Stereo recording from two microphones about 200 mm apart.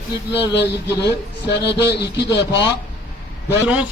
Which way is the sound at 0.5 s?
60° left (ahead or behind).